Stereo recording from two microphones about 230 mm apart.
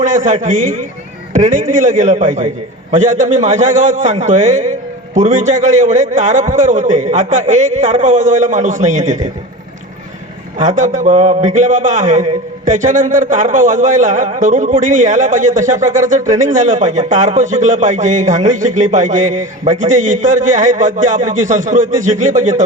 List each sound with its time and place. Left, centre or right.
0.0 s a sound: right
0.4 s a man's voice: right
10.6 s a man's voice: right